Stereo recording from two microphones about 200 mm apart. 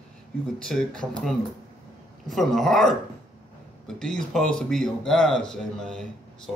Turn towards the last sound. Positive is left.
turn(degrees=5)  # may be behind; listen again after turning